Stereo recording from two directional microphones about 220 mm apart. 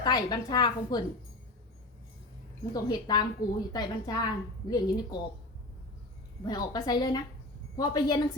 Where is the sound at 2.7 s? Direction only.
20° left (ahead or behind).